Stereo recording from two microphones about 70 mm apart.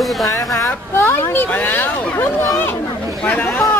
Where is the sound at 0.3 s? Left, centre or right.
Left.